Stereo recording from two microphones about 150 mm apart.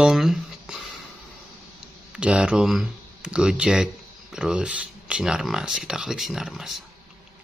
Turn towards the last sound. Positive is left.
turn(degrees=0)  # may be behind; listen again after turning